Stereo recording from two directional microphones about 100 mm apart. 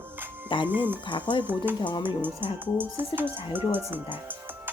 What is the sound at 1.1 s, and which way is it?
Speech, 55° left (ahead or behind).